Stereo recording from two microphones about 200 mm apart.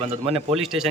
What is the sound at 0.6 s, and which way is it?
Speech, centre (ahead or behind).